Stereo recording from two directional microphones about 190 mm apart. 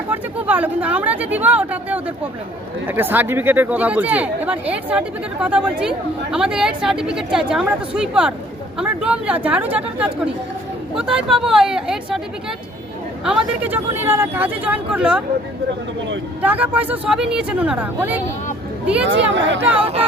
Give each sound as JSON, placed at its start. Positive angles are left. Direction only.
{"t": 0.1, "sound": "speech", "side_deg": -10}
{"t": 13.2, "sound": "speech", "side_deg": -5}
{"t": 16.4, "sound": "speech", "side_deg": -10}
{"t": 19.0, "sound": "speech", "side_deg": -70}
{"t": 19.8, "sound": "speech", "side_deg": -30}